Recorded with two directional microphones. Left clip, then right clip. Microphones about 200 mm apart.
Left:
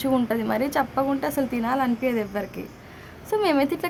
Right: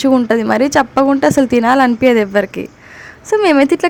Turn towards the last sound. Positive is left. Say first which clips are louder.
# right 11 dB
turn(degrees=-35)  # may be behind; listen again after turning